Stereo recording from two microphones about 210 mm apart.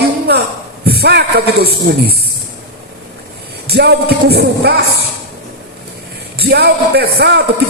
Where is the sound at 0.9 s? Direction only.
50° right (ahead or behind).